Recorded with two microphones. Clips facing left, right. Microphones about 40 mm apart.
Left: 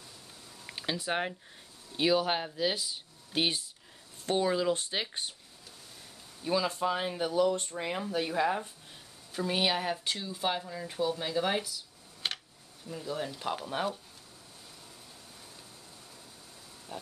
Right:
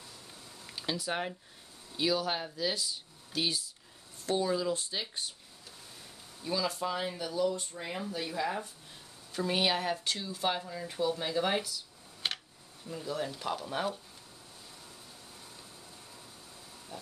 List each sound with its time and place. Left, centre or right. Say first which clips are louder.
0.7 s speech: left 2 dB; left
3.3 s speech: left 3 dB; left
6.4 s speech: left 3 dB; left
9.3 s speech: even; centre
12.2 s a sound: even; centre
12.8 s speech: even; centre
13.4 s speech: left 2 dB; centre
16.9 s a sound: left 3 dB; left